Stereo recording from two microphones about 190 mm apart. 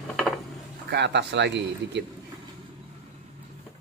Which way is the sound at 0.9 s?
65° right (ahead or behind).